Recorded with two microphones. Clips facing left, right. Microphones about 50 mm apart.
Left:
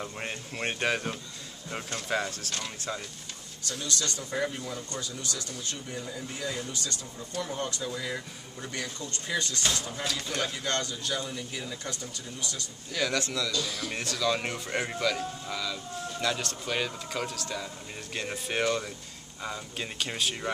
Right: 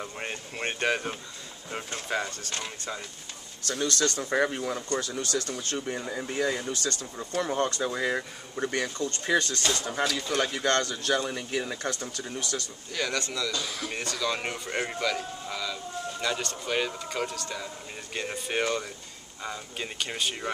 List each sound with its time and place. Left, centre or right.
0.0 s speech: centre
3.6 s speech: right
4.6 s speech: right
4.8 s speech: right
12.9 s speech: centre
13.5 s speech: right
13.8 s speech: centre